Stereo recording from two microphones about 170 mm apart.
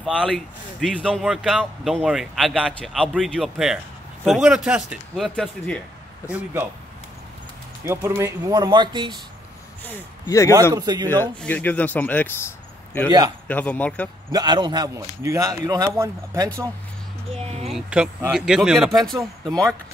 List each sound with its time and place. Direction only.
0.0 s speech: 5° right (ahead or behind)
7.8 s speech: 15° right (ahead or behind)
9.8 s speech: 15° left (ahead or behind)
10.7 s speech: 20° right (ahead or behind)
11.1 s speech: 10° left (ahead or behind)
13.5 s speech: 10° left (ahead or behind)
14.3 s speech: 25° right (ahead or behind)
17.3 s a sound: 40° right (ahead or behind)
17.6 s speech: 5° right (ahead or behind)
19.1 s speech: 20° right (ahead or behind)